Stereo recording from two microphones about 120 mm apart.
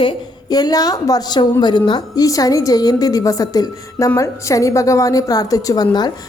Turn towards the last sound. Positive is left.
turn(degrees=35)  # may be behind; listen again after turning